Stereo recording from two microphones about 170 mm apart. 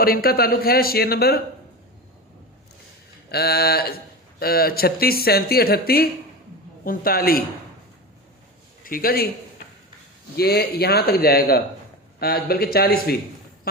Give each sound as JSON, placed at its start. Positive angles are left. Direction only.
{"t": 0.0, "sound": "speech", "side_deg": 60}
{"t": 3.3, "sound": "speech", "side_deg": 70}
{"t": 8.8, "sound": "a man's voice", "side_deg": 60}
{"t": 10.3, "sound": "a man's voice", "side_deg": 70}